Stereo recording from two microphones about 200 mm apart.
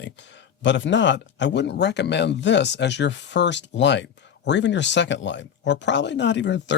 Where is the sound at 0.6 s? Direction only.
65° left (ahead or behind).